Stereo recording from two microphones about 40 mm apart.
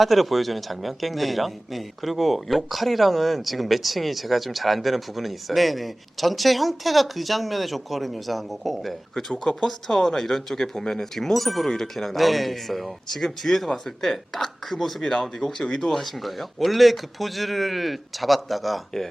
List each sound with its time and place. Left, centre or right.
0.0 s a man's voice: centre
9.4 s a man's voice: centre
15.6 s speech: left
15.9 s a man's voice: centre